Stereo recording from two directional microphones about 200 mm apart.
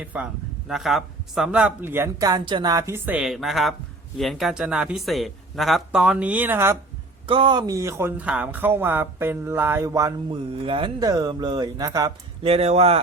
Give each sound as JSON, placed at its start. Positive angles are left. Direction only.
{"t": 0.0, "sound": "speech", "side_deg": -5}
{"t": 7.3, "sound": "speech", "side_deg": -25}